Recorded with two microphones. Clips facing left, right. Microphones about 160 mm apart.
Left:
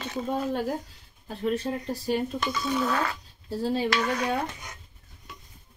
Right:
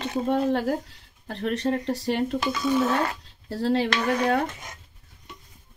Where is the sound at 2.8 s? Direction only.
25° right (ahead or behind).